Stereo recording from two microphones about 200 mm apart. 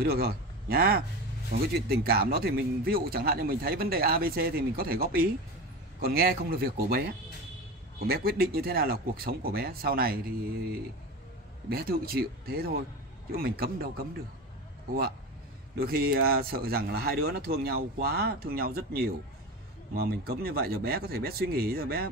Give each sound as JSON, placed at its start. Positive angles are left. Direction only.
{"t": 0.0, "sound": "a man's voice", "side_deg": -50}
{"t": 15.8, "sound": "speech", "side_deg": -50}